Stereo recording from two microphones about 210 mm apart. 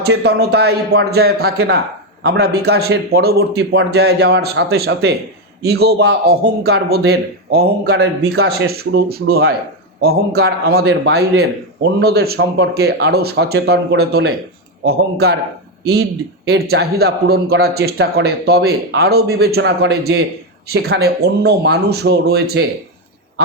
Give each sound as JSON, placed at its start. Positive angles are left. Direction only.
{"t": 0.0, "sound": "a man's voice", "side_deg": -50}